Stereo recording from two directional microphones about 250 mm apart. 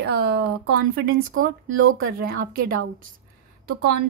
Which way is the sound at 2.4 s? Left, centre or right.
Right.